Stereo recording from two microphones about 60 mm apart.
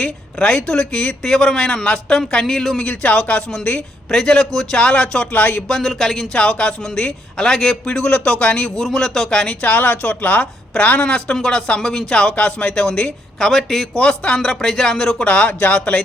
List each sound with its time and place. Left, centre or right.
0.0 s a man's voice: centre
2.8 s a man's voice: left
4.1 s a man's voice: centre
5.3 s speech: left
5.6 s a man's voice: centre
6.3 s a man's voice: centre
8.8 s speech: centre; by 11.1 s left
11.1 s a man's voice: centre
15.2 s speech: left